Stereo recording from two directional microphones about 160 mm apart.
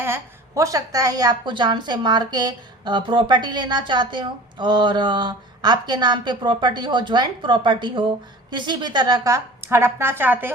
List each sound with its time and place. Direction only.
0.0 s a woman's voice: 15° right (ahead or behind)